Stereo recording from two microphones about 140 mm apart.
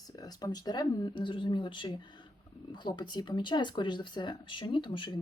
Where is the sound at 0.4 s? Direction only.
30° left (ahead or behind).